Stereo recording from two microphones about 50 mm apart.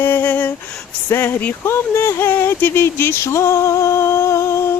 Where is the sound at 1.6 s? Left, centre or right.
Left.